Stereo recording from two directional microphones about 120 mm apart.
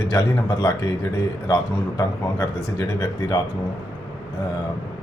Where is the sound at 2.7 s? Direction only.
30° left (ahead or behind).